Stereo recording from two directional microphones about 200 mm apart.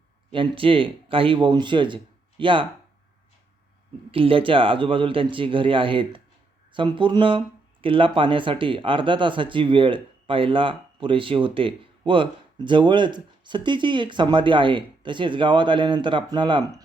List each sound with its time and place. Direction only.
0.3 s speech: 25° right (ahead or behind)
4.1 s speech: 25° right (ahead or behind)